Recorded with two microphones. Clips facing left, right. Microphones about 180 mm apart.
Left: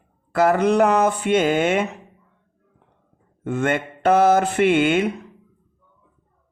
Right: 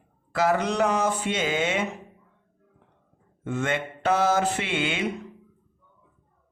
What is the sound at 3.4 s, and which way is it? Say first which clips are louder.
Mantra: left 5 dB; 55° left (ahead or behind).